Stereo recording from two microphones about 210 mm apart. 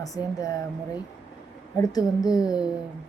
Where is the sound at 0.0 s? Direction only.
15° left (ahead or behind).